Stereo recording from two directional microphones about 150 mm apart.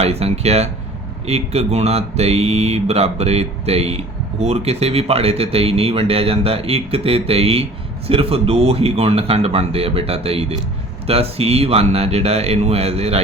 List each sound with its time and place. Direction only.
0.0 s speech: 45° right (ahead or behind)